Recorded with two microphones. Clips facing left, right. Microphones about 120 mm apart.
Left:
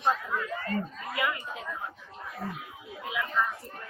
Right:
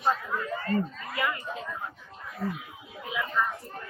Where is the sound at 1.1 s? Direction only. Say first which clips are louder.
Even; centre (ahead or behind).